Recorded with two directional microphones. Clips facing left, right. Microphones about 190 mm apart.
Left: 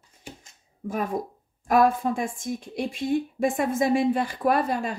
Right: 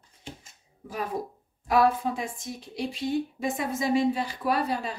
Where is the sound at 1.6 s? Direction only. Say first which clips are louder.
Left 2 dB; 45° left (ahead or behind).